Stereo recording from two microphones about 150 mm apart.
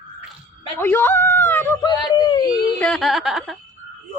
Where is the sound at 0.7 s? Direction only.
15° left (ahead or behind).